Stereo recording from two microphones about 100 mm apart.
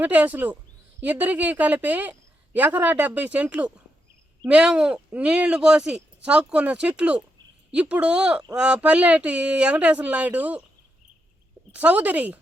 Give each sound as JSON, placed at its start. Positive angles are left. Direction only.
{"t": 0.0, "sound": "a woman's voice", "side_deg": -15}
{"t": 11.7, "sound": "a woman's voice", "side_deg": -15}